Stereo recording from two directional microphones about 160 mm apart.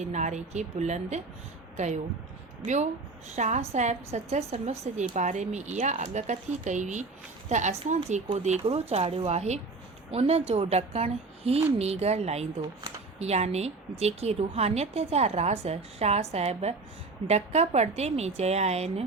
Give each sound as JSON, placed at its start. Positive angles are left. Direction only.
{"t": 0.0, "sound": "a woman's voice", "side_deg": -45}